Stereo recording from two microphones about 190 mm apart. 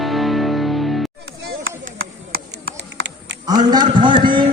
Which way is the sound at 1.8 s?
50° right (ahead or behind).